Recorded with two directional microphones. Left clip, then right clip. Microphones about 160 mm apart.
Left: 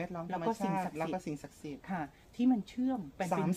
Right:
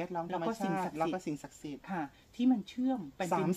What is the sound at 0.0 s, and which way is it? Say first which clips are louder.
Speech: right 1 dB; 10° left (ahead or behind).